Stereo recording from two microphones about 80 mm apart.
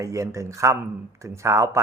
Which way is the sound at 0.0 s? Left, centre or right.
Right.